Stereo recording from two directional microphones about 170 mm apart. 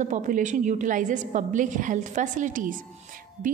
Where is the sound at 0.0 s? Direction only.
45° right (ahead or behind).